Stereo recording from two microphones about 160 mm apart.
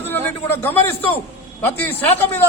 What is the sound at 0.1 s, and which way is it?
A man's voice, 15° left (ahead or behind).